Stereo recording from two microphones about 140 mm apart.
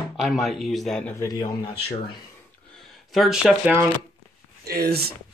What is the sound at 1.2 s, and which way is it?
Speech, 25° left (ahead or behind).